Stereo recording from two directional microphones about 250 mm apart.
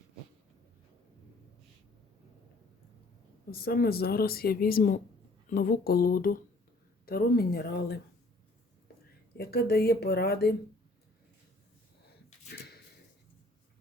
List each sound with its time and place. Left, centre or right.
3.5 s speech: left
9.4 s speech: left
12.5 s a sound: left